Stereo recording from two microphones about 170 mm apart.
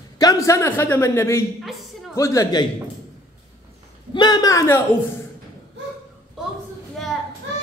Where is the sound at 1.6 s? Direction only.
Centre (ahead or behind).